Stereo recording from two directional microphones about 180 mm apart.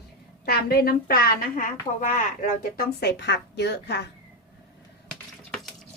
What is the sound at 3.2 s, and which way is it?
Speech, 70° left (ahead or behind).